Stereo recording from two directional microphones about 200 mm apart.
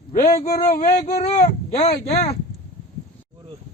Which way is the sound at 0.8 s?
35° left (ahead or behind).